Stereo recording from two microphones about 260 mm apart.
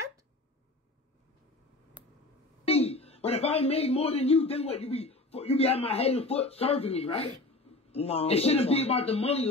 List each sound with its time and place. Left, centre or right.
2.6 s a man's voice: left